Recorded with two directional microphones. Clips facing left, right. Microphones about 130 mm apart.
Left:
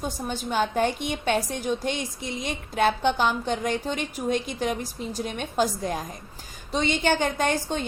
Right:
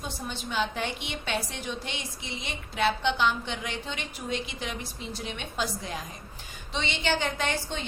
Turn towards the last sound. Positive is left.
turn(degrees=45)  # may be behind; listen again after turning